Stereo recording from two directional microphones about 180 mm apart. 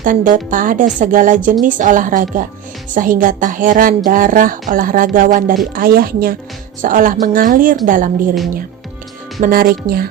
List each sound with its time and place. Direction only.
0.0 s a woman's voice: 50° right (ahead or behind)
9.4 s speech: 55° right (ahead or behind)